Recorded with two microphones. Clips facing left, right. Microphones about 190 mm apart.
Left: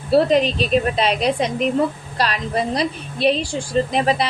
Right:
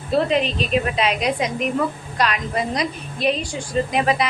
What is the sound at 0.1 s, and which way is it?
A woman's voice, 40° left (ahead or behind).